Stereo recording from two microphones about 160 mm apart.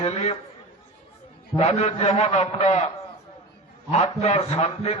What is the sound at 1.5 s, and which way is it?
A man's voice, 40° left (ahead or behind).